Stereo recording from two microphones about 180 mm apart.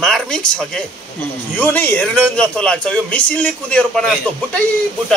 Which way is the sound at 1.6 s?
10° left (ahead or behind).